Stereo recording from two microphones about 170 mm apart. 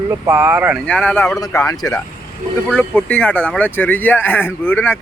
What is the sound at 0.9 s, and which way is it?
Speech, 10° left (ahead or behind).